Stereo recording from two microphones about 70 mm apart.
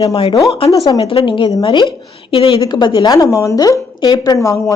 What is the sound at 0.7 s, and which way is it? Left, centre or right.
Speech, left.